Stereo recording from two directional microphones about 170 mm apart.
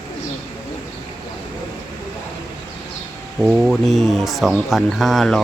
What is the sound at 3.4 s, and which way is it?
Speech, 5° right (ahead or behind).